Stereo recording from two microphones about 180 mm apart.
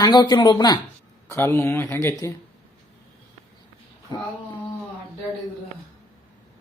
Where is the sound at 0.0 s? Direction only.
20° left (ahead or behind).